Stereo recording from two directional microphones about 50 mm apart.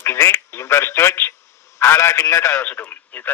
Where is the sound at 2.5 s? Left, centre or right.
Left.